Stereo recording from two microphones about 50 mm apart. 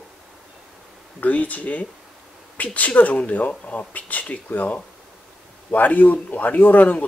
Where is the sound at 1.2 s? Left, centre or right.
Left.